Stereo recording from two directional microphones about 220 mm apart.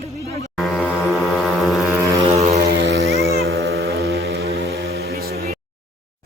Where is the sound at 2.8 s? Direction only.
55° right (ahead or behind).